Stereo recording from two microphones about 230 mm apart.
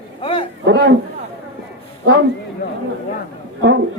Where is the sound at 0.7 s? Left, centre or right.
Right.